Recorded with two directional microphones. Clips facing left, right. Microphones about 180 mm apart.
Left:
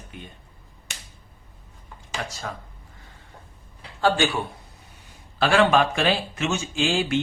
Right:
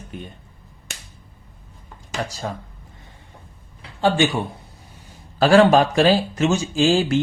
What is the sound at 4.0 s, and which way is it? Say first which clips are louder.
Speech: right 3 dB; 20° right (ahead or behind).